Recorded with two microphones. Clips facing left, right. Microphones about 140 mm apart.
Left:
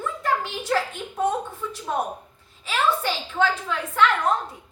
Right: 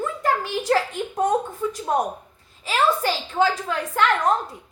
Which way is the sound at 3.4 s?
40° right (ahead or behind).